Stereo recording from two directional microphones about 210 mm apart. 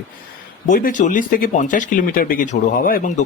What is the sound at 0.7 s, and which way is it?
Speech, 40° left (ahead or behind).